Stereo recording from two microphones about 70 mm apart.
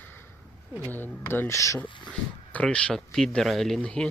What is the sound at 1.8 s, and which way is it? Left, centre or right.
Speech, centre.